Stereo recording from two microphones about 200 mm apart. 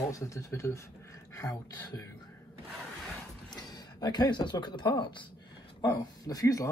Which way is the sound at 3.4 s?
20° left (ahead or behind).